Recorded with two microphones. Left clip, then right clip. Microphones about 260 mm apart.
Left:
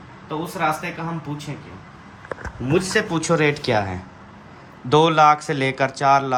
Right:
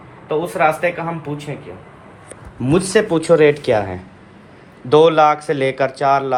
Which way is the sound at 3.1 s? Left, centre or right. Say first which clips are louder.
Right 10 dB; centre.